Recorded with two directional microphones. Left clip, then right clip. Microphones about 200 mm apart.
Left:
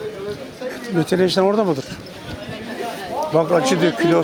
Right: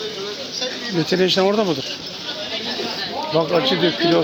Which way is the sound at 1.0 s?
20° left (ahead or behind).